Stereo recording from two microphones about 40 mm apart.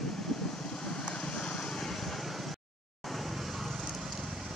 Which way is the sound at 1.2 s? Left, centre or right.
Left.